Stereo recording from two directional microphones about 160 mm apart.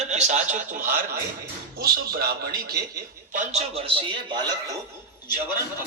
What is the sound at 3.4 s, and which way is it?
A man's voice, 40° right (ahead or behind).